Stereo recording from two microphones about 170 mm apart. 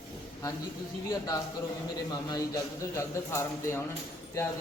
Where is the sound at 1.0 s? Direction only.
20° left (ahead or behind).